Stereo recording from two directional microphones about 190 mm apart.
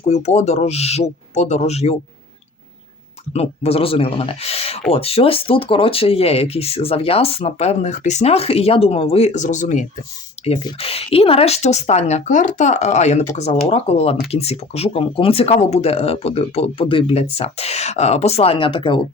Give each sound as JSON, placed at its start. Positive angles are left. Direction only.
{"t": 0.0, "sound": "speech", "side_deg": 35}
{"t": 3.3, "sound": "speech", "side_deg": 35}